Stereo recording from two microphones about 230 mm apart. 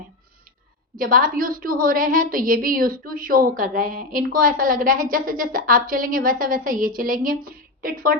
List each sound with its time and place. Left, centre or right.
0.9 s a woman's voice: right